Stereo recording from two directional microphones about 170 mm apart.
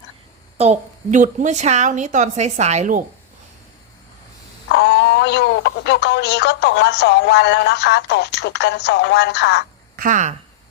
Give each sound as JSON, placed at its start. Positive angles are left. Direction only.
{"t": 0.6, "sound": "a woman's voice", "side_deg": -45}
{"t": 4.7, "sound": "speech", "side_deg": 90}
{"t": 9.9, "sound": "speech", "side_deg": -55}